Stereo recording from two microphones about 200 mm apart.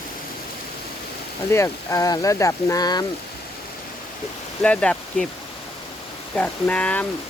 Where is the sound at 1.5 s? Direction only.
15° left (ahead or behind).